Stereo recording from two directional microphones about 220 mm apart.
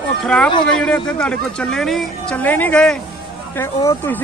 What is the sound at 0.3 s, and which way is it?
Speech, 5° left (ahead or behind).